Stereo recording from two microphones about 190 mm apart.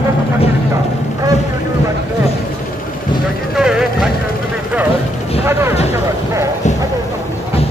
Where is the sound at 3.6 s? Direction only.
5° right (ahead or behind).